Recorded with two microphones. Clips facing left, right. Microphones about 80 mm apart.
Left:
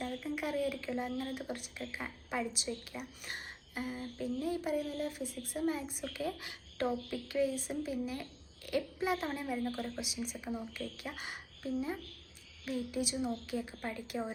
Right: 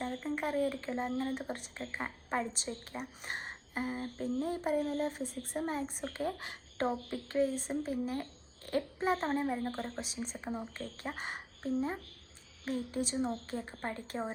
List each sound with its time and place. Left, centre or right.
0.0 s a child's voice: right
6.8 s a child's voice: right